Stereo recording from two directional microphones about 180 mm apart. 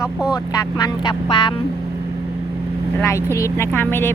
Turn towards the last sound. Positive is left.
turn(degrees=10)  # may be behind; listen again after turning